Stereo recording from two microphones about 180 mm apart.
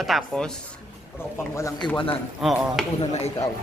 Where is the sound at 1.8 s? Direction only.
25° left (ahead or behind).